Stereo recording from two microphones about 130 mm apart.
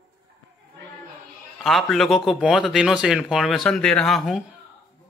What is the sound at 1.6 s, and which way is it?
Speech, centre (ahead or behind).